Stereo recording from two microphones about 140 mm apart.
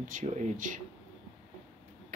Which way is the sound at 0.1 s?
70° right (ahead or behind).